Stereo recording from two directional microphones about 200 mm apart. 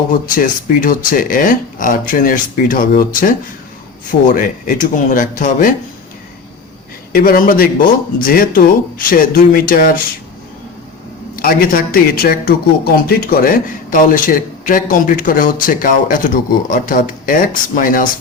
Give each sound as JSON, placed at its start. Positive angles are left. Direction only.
{"t": 0.1, "sound": "speech", "side_deg": 40}
{"t": 7.1, "sound": "speech", "side_deg": 45}
{"t": 11.3, "sound": "speech", "side_deg": 45}